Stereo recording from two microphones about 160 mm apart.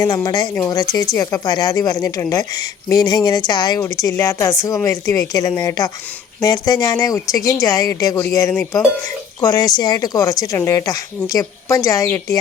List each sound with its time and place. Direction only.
0.0 s speech: 25° left (ahead or behind)